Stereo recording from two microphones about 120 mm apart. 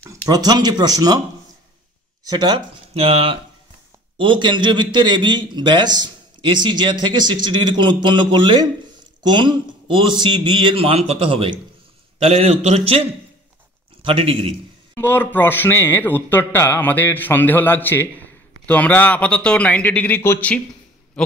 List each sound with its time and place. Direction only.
0.0 s a man's voice: 25° right (ahead or behind)
2.2 s a man's voice: 35° right (ahead or behind)
2.9 s a man's voice: 55° right (ahead or behind)
4.2 s a man's voice: 45° right (ahead or behind)
12.3 s a man's voice: 65° right (ahead or behind)
15.0 s speech: 20° left (ahead or behind)